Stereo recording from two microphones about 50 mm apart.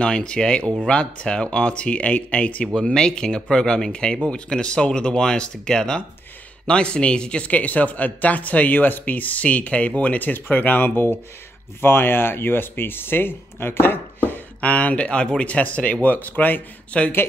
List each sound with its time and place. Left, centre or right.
0.0 s speech: centre
2.7 s speech: centre; by 13.9 s left
14.2 s speech: left
16.9 s speech: left